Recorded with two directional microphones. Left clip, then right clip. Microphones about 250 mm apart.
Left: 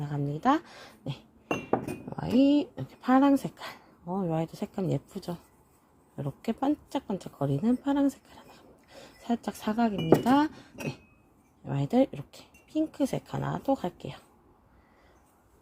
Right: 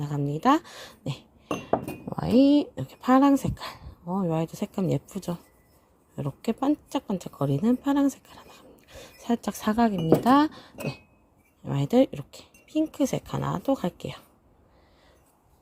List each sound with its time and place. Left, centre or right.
0.0 s speech: right